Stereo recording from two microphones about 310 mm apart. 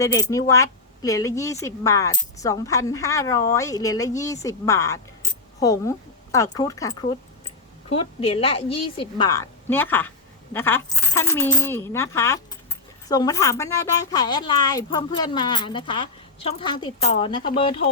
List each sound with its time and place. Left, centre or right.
0.0 s speech: centre